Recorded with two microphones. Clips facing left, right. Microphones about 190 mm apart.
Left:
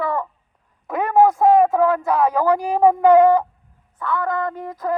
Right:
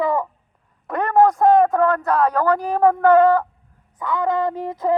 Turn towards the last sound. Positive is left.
turn(degrees=-25)  # may be behind; listen again after turning